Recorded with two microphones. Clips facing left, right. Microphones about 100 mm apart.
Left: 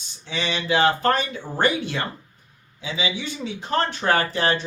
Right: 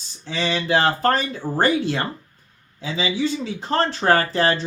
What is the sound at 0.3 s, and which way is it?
Speech, 35° right (ahead or behind).